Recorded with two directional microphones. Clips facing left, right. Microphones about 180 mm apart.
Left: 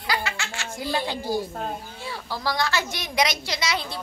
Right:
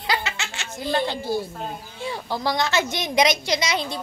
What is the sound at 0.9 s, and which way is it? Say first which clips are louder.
Speech: right 3 dB; 10° left (ahead or behind).